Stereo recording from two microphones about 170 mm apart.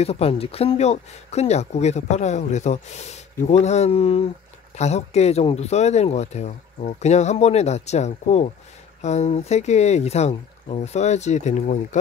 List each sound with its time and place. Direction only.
0.0 s speech: 35° left (ahead or behind)